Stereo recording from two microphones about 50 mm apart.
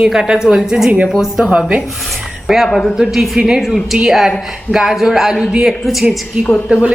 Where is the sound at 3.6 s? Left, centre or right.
Centre.